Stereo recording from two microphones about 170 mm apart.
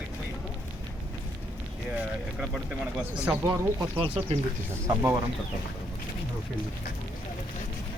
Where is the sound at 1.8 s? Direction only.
5° right (ahead or behind).